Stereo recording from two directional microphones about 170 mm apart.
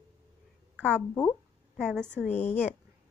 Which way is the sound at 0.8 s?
10° left (ahead or behind).